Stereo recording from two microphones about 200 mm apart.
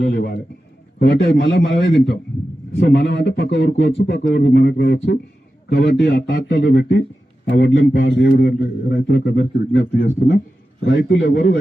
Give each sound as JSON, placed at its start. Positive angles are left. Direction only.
{"t": 0.0, "sound": "a man's voice", "side_deg": 55}
{"t": 8.0, "sound": "a man's voice", "side_deg": 55}
{"t": 11.2, "sound": "speech", "side_deg": 45}